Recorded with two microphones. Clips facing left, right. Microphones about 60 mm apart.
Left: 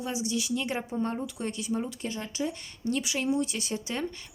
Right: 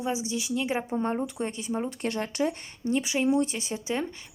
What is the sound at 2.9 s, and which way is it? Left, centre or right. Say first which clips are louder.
Speech: right 4 dB; right.